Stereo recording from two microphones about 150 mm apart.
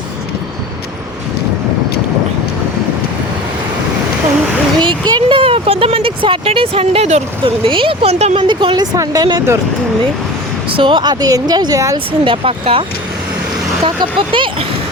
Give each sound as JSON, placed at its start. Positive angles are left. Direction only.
{"t": 4.8, "sound": "a sound", "side_deg": -30}
{"t": 8.4, "sound": "a woman's voice", "side_deg": -30}
{"t": 10.8, "sound": "a woman's voice", "side_deg": -30}
{"t": 12.2, "sound": "speech", "side_deg": -35}
{"t": 13.8, "sound": "speech", "side_deg": -35}